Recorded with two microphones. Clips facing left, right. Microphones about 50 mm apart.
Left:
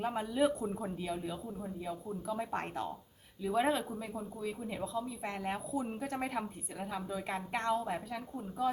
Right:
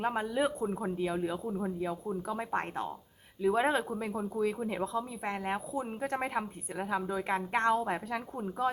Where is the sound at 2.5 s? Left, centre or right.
Right.